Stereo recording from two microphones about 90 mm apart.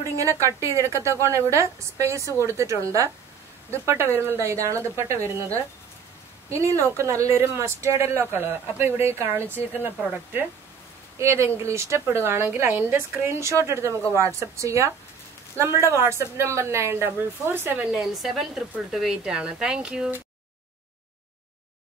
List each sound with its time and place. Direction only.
0.2 s a woman's voice: 35° right (ahead or behind); by 10.5 s 20° right (ahead or behind)
11.1 s a woman's voice: 30° right (ahead or behind)
17.9 s a woman's voice: centre (ahead or behind)